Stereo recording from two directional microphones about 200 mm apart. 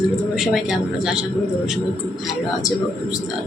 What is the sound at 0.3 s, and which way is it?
Speech, centre (ahead or behind).